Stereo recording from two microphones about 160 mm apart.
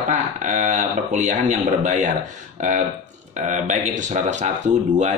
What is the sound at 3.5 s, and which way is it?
Speech, 50° right (ahead or behind).